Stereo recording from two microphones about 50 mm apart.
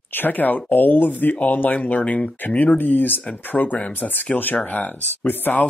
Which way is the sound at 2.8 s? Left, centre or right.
Left.